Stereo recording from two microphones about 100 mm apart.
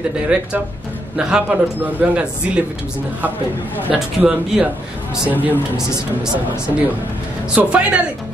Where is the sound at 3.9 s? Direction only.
10° right (ahead or behind).